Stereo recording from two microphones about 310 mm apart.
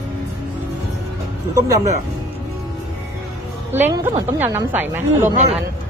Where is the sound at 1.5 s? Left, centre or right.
Centre.